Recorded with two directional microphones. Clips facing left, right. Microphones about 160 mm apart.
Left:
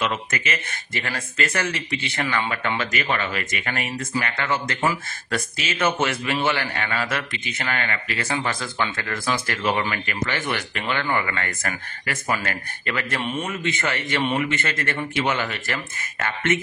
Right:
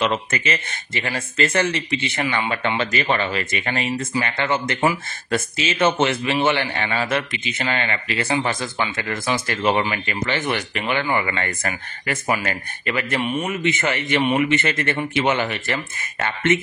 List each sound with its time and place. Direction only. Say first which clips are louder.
0.0 s a man's voice: right 4 dB; 30° right (ahead or behind)
2.2 s speech: even; 10° right (ahead or behind)
2.5 s a man's voice: right 3 dB; 25° right (ahead or behind)